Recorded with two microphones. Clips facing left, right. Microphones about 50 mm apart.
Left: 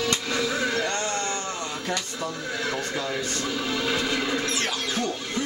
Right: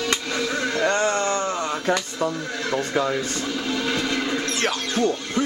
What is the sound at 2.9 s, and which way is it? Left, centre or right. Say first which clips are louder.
Speech: right 6 dB; centre.